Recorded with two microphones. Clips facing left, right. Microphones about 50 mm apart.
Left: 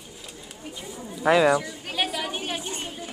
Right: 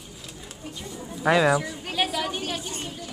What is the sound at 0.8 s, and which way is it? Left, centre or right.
A woman's voice, centre.